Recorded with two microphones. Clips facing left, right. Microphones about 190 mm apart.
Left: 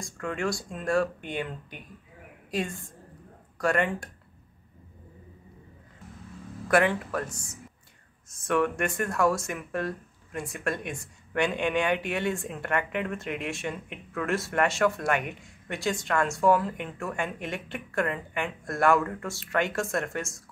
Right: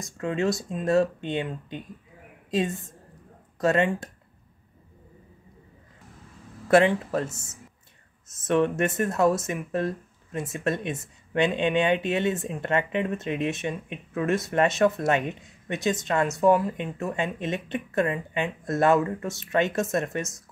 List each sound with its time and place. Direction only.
0.0 s speech: 20° right (ahead or behind)
6.7 s speech: 25° right (ahead or behind)